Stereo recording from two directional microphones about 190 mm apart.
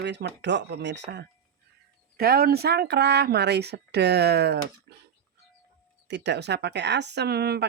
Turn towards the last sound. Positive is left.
turn(degrees=-60)  # may be behind; listen again after turning